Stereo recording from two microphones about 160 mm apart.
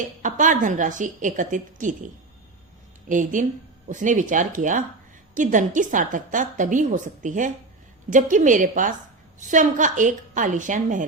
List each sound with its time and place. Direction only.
0.2 s a woman's voice: 55° right (ahead or behind)
3.1 s a woman's voice: 55° right (ahead or behind)